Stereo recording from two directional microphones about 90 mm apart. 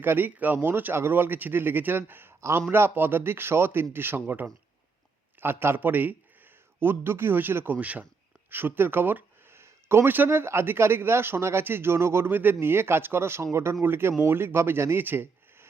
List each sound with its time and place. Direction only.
0.0 s a man's voice: 20° right (ahead or behind)